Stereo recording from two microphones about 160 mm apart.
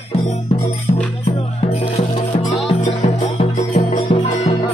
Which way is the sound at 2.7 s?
40° left (ahead or behind).